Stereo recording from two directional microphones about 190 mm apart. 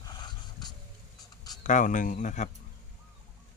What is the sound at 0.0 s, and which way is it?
Dog, 20° left (ahead or behind).